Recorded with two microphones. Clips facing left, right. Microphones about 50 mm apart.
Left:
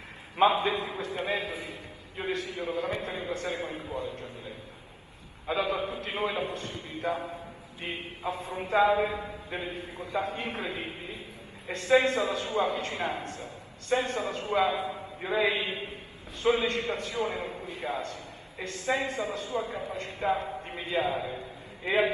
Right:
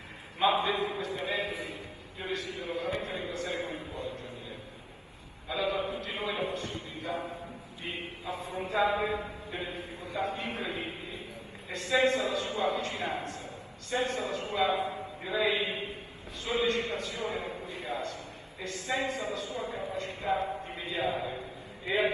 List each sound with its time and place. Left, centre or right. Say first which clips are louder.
0.4 s a man's voice: left 3 dB; left
5.5 s a man's voice: left 2 dB; left